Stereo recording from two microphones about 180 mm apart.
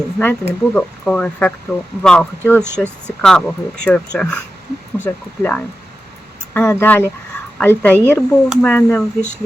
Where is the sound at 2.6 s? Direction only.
10° right (ahead or behind).